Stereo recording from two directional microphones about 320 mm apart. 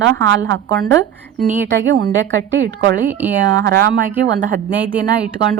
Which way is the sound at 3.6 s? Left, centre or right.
Right.